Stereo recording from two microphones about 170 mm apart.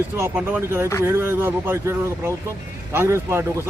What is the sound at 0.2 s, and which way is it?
Speech, 10° right (ahead or behind).